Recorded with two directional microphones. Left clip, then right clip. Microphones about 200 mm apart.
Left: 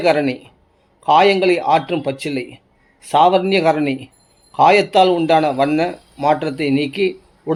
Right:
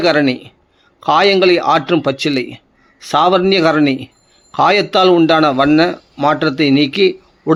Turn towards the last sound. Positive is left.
turn(degrees=-30)  # may be behind; listen again after turning